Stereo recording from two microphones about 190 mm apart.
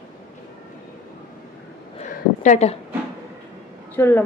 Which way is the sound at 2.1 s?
40° left (ahead or behind).